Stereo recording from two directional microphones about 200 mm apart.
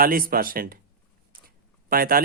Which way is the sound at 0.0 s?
45° right (ahead or behind).